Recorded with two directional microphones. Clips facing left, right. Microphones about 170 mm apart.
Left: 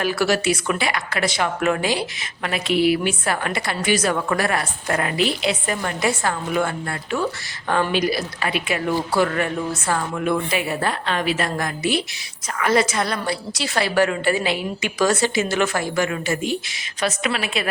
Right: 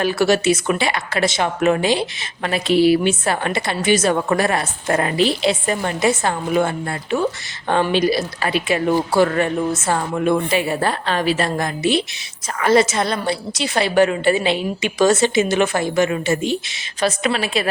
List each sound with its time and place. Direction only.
0.0 s a woman's voice: 25° right (ahead or behind)